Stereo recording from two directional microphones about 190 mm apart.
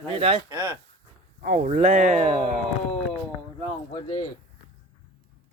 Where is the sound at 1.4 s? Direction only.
45° right (ahead or behind).